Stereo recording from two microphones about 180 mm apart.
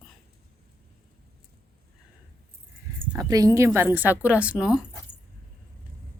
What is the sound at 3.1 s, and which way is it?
A woman's voice, 20° right (ahead or behind).